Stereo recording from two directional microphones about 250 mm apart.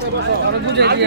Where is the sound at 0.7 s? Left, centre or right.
Right.